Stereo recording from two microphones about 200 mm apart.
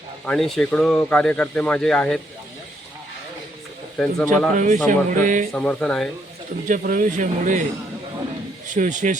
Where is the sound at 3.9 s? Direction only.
5° left (ahead or behind).